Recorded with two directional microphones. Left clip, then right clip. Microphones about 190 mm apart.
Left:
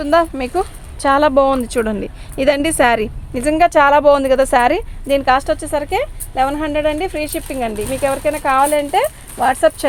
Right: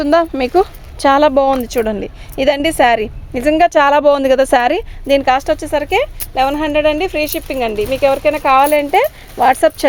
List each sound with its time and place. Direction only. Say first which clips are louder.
0.0 s speech: right 2 dB; 50° right (ahead or behind)